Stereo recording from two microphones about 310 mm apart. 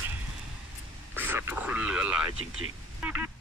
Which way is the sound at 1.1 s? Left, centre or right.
Centre.